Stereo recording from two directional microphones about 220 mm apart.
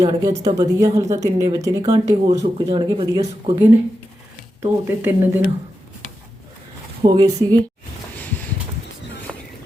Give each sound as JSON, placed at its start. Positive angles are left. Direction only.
{"t": 0.0, "sound": "speech", "side_deg": -15}
{"t": 4.6, "sound": "speech", "side_deg": -10}
{"t": 7.0, "sound": "speech", "side_deg": -20}
{"t": 9.3, "sound": "a sound", "side_deg": -10}